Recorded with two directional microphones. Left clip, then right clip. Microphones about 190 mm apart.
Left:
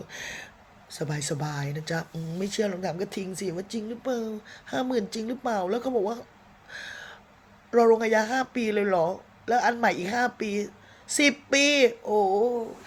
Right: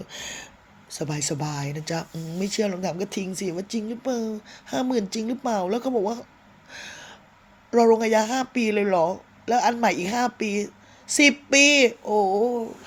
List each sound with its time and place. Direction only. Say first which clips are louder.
0.1 s speech: even; 35° right (ahead or behind)
6.7 s a sound: even; 30° right (ahead or behind)
7.7 s speech: right 2 dB; 30° right (ahead or behind)